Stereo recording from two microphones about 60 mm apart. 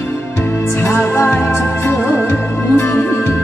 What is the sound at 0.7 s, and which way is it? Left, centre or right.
Music, left.